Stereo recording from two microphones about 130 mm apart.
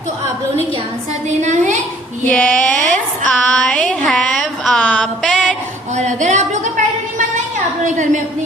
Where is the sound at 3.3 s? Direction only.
5° left (ahead or behind).